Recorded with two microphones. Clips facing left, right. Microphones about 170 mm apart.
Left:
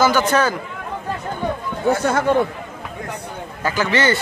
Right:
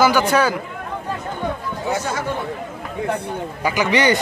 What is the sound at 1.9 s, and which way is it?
Speech, 55° left (ahead or behind).